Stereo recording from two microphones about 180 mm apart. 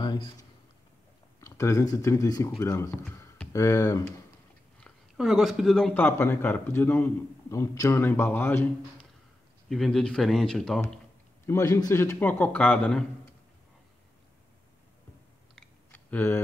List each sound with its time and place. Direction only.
0.0 s a sound: 25° left (ahead or behind)
1.4 s a man's voice: 15° left (ahead or behind)
4.7 s a man's voice: centre (ahead or behind)
9.7 s speech: centre (ahead or behind)
11.4 s a man's voice: 15° left (ahead or behind)
15.9 s computer keyboard: 10° left (ahead or behind)